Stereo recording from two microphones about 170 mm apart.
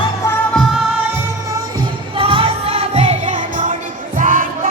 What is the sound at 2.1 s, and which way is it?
Music, 35° right (ahead or behind).